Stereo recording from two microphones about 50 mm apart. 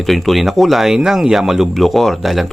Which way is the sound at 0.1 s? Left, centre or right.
Centre.